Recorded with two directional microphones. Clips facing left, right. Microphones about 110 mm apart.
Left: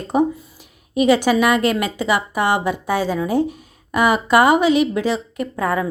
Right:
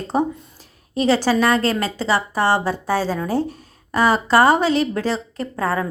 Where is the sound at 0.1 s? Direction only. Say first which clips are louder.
Left 3 dB; 15° left (ahead or behind).